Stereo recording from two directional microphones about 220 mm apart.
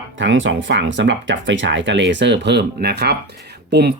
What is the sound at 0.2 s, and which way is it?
Speech, 55° right (ahead or behind).